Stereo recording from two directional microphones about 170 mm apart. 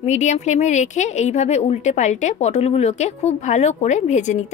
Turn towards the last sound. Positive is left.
turn(degrees=45)  # may be behind; listen again after turning